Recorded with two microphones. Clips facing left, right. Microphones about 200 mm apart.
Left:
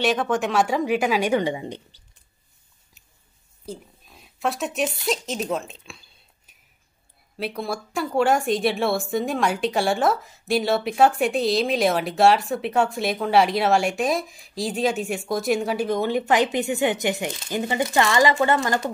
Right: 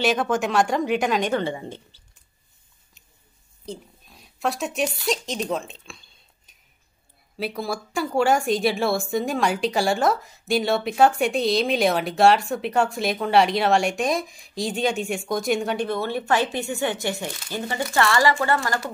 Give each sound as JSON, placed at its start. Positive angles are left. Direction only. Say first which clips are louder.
{"t": 0.0, "sound": "speech", "louder": "even", "side_deg": 0}
{"t": 3.6, "sound": "a sound", "louder": "even", "side_deg": 5}
{"t": 5.0, "sound": "a woman's voice", "louder": "even", "side_deg": 0}